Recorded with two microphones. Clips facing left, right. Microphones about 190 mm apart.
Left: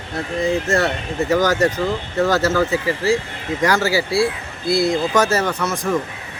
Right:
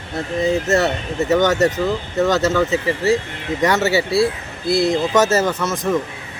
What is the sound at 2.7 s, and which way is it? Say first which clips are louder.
Speech: right 1 dB; 25° right (ahead or behind).